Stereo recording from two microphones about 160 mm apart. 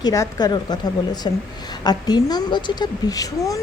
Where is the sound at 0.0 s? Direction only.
20° left (ahead or behind).